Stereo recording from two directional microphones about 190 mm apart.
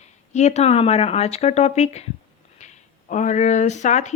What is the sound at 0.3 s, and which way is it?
Speech, 35° left (ahead or behind).